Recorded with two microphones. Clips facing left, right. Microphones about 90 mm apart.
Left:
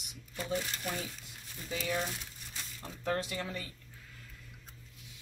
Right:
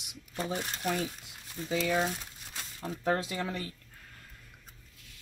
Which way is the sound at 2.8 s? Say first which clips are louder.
Right 5 dB; 60° right (ahead or behind).